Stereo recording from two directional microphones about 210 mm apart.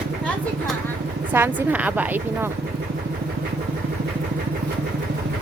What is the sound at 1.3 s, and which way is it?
A woman's voice, 10° right (ahead or behind).